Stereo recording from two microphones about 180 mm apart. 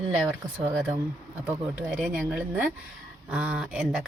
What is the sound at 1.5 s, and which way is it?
Speech, 5° right (ahead or behind).